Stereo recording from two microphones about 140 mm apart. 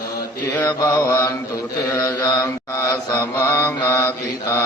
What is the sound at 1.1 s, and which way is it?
Mantra, 25° left (ahead or behind).